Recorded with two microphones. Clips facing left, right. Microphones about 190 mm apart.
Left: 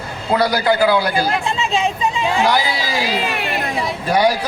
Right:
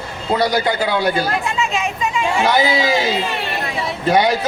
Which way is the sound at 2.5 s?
25° right (ahead or behind).